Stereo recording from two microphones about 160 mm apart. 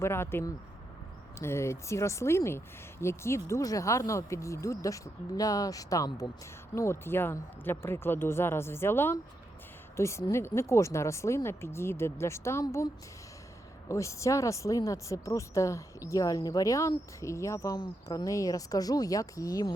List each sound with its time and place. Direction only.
0.0 s speech: 15° left (ahead or behind)